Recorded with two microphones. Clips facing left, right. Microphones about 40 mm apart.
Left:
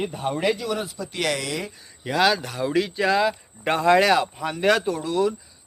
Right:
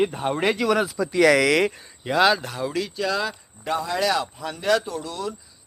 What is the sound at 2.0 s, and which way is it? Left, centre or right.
Speech, centre.